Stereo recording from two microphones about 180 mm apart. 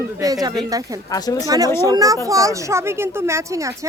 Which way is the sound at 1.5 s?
20° right (ahead or behind).